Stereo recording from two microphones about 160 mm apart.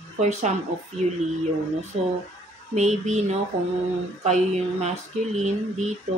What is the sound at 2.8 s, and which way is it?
Speech, 45° right (ahead or behind).